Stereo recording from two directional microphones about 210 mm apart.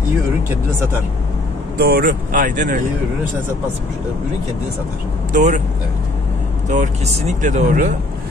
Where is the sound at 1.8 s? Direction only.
45° right (ahead or behind).